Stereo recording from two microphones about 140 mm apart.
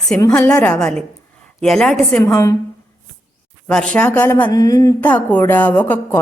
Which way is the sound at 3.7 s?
5° left (ahead or behind).